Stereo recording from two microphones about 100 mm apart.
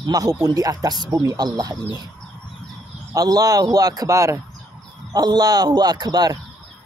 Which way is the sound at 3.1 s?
40° right (ahead or behind).